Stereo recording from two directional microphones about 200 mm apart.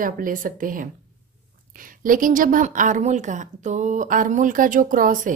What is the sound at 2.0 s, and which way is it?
A woman's voice, 40° right (ahead or behind).